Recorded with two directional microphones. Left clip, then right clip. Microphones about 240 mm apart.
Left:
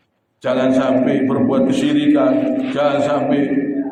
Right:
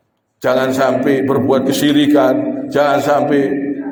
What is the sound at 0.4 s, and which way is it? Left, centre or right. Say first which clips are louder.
A man's voice: right 3 dB; right.